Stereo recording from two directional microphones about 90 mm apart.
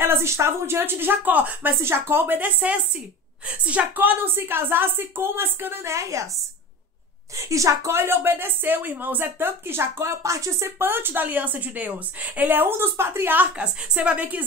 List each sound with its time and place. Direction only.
0.0 s a woman's voice: 30° right (ahead or behind)
7.3 s a woman's voice: 35° right (ahead or behind)
10.8 s a woman's voice: 25° right (ahead or behind)